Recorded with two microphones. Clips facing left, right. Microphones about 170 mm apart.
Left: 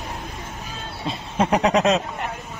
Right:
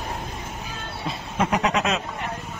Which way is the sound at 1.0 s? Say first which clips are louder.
Left 3 dB; 30° left (ahead or behind).